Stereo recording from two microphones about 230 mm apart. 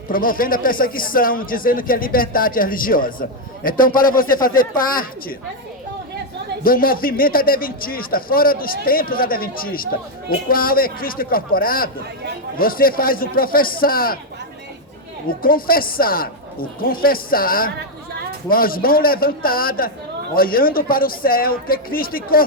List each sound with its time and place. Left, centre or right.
0.1 s speech: left
6.7 s speech: left
15.3 s speech: left